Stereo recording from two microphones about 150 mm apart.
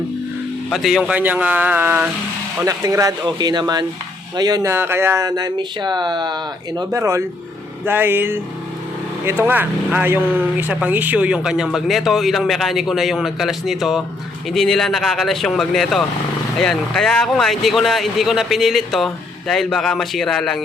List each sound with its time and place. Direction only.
0.7 s speech: centre (ahead or behind)
2.6 s speech: 20° right (ahead or behind); by 20.7 s centre (ahead or behind)